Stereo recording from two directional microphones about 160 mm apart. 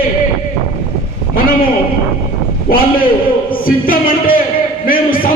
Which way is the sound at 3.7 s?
60° left (ahead or behind).